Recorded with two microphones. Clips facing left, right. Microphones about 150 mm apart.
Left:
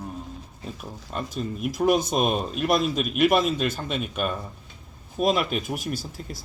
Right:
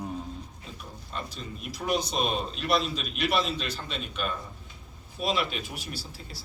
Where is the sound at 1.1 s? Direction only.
50° left (ahead or behind).